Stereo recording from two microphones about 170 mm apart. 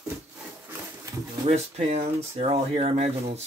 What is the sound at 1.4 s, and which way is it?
Speech, 40° right (ahead or behind).